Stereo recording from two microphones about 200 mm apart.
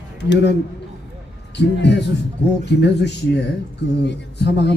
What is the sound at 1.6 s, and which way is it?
A man's voice, 60° left (ahead or behind).